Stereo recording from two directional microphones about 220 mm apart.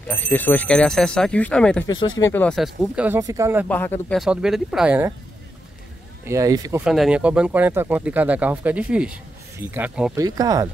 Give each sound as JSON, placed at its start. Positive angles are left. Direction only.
{"t": 0.1, "sound": "speech", "side_deg": 10}
{"t": 1.9, "sound": "speech", "side_deg": 20}
{"t": 3.6, "sound": "speech", "side_deg": 10}
{"t": 4.2, "sound": "speech", "side_deg": -5}
{"t": 6.2, "sound": "speech", "side_deg": -15}
{"t": 6.8, "sound": "speech", "side_deg": -5}
{"t": 10.1, "sound": "speech", "side_deg": -15}